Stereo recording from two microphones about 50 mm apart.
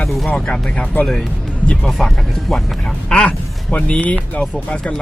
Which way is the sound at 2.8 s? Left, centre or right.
Centre.